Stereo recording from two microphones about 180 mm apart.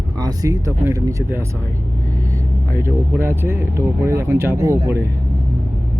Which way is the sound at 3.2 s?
10° right (ahead or behind).